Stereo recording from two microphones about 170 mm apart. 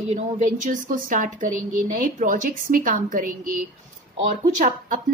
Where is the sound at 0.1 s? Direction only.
45° right (ahead or behind).